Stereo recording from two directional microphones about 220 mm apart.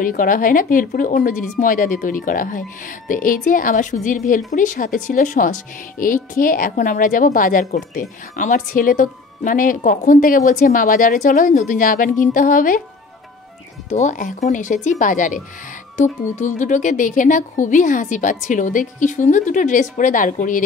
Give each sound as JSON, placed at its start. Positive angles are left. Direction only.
{"t": 0.0, "sound": "a woman's voice", "side_deg": 40}
{"t": 13.8, "sound": "a woman's voice", "side_deg": 30}